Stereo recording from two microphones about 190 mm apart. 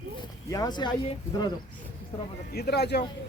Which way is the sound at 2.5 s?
55° left (ahead or behind).